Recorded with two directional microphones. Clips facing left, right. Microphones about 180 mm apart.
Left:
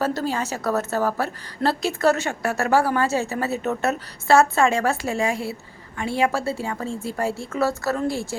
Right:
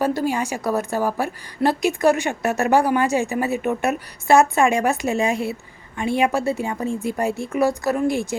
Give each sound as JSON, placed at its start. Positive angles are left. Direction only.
{"t": 0.0, "sound": "a woman's voice", "side_deg": -15}